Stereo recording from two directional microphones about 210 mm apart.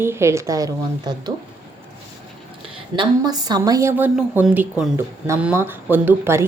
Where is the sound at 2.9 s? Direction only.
20° right (ahead or behind).